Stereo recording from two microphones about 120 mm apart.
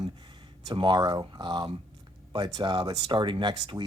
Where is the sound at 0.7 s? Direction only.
40° right (ahead or behind).